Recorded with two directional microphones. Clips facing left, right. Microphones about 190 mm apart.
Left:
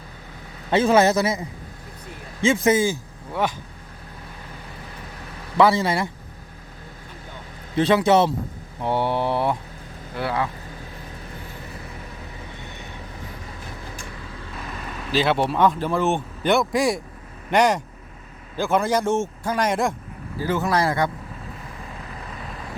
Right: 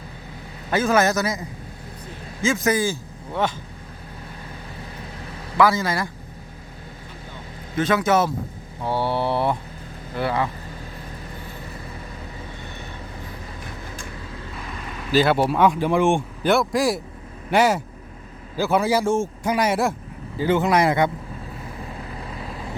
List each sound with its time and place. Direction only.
0.7 s a man's voice: 30° left (ahead or behind)
5.5 s a man's voice: 25° left (ahead or behind)
7.8 s speech: 30° left (ahead or behind); by 9.6 s 15° left (ahead or behind)
10.2 s speech: centre (ahead or behind)
15.1 s speech: centre (ahead or behind)
20.4 s speech: 20° right (ahead or behind)